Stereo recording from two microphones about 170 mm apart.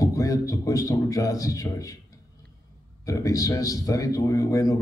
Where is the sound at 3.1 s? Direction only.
20° left (ahead or behind).